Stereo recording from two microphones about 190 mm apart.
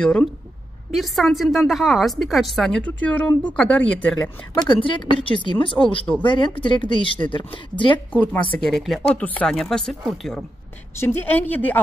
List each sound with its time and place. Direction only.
0.0 s speech: 5° left (ahead or behind)
4.6 s speech: 25° left (ahead or behind)
8.1 s speech: 10° left (ahead or behind)